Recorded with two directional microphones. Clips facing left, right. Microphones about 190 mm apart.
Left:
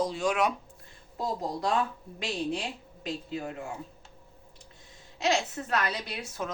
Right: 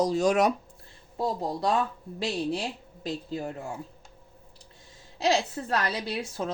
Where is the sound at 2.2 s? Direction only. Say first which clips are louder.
Right 3 dB; 35° right (ahead or behind).